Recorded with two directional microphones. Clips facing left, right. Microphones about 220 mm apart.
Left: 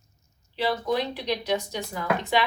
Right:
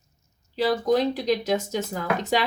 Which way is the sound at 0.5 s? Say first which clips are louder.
Right 4 dB; 40° right (ahead or behind).